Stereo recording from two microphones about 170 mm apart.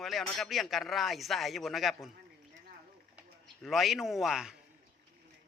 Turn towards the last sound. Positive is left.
turn(degrees=-5)  # may be behind; listen again after turning